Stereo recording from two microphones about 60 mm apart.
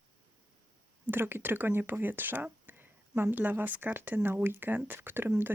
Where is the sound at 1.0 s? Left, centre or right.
Right.